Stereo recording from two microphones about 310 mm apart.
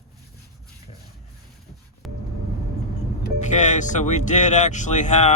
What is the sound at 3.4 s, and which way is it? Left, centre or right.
Speech, left.